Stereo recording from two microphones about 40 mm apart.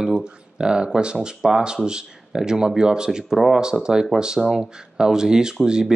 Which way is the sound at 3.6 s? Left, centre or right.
Centre.